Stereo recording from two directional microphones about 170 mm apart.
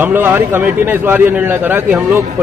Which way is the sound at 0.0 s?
10° right (ahead or behind).